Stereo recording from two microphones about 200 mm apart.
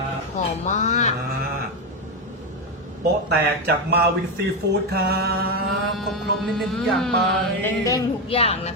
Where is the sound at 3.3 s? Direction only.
55° right (ahead or behind).